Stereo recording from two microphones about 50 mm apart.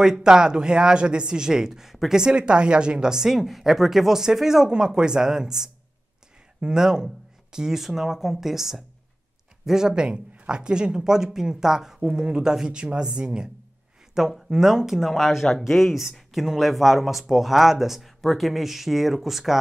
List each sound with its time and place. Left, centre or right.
0.0 s speech: centre
14.3 s speech: centre